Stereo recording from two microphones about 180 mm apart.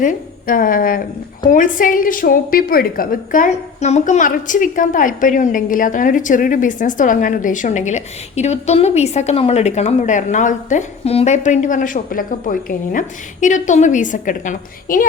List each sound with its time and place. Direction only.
0.0 s a woman's voice: 50° left (ahead or behind)